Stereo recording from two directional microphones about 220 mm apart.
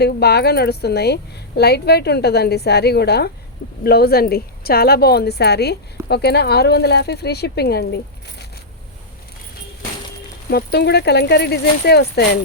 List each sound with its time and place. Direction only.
0.0 s a woman's voice: 45° left (ahead or behind)
10.5 s a woman's voice: 50° left (ahead or behind)